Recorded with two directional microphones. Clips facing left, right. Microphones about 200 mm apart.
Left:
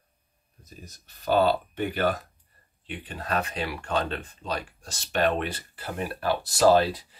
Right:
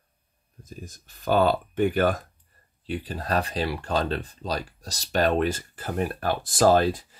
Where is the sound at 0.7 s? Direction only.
50° right (ahead or behind).